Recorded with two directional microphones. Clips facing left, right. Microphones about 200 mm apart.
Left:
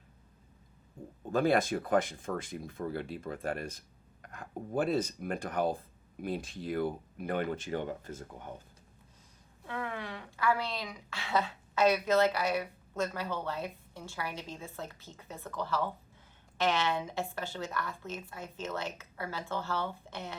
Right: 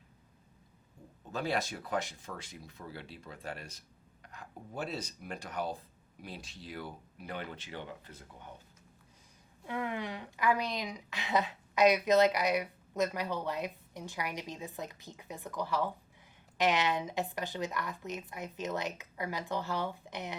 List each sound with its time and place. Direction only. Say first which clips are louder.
1.3 s speech: left 7 dB; 50° left (ahead or behind)
9.6 s a woman's voice: right 2 dB; 15° right (ahead or behind)